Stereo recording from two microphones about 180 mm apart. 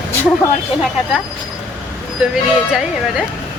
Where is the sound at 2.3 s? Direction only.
Centre (ahead or behind).